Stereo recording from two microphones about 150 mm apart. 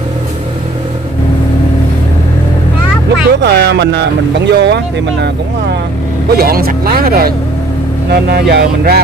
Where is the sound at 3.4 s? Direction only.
90° right.